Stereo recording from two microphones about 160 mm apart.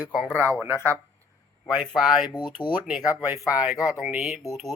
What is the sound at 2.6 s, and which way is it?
Speech, 30° left (ahead or behind).